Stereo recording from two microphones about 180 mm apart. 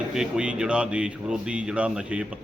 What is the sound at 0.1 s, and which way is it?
A man's voice, 5° right (ahead or behind).